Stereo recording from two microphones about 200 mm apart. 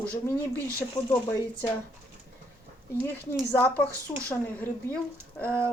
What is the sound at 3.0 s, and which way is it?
Speech, 10° left (ahead or behind).